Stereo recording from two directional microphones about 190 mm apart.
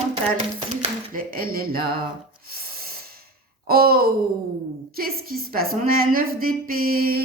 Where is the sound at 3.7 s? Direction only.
50° right (ahead or behind).